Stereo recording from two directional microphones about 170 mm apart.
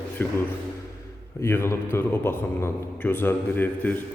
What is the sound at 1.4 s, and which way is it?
A man's voice, 15° left (ahead or behind).